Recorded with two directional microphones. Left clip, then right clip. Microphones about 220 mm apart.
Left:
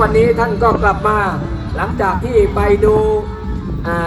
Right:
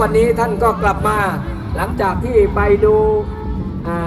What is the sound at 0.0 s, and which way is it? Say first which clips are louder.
Speech: left 2 dB; 20° right (ahead or behind).